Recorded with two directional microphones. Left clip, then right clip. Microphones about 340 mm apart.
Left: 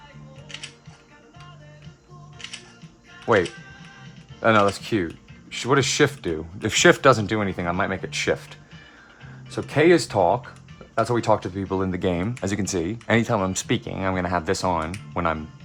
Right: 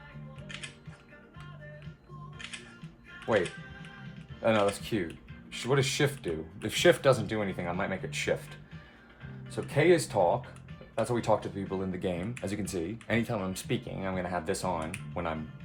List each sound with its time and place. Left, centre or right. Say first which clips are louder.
4.4 s speech: left 8 dB; left
9.7 s speech: left 7 dB; left